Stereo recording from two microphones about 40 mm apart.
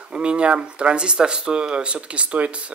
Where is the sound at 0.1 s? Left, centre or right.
Right.